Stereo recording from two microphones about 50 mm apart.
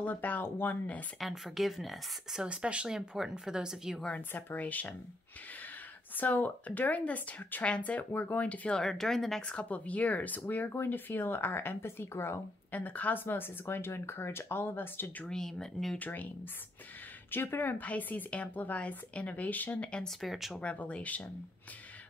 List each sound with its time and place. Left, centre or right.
0.0 s speech: left
1.2 s speech: centre
2.3 s speech: centre
4.3 s speech: left
6.1 s speech: left
8.7 s speech: centre
9.5 s speech: left
12.7 s speech: left
15.2 s speech: centre
16.0 s speech: left
17.3 s speech: left
17.7 s speech: left
20.2 s speech: centre
20.6 s speech: left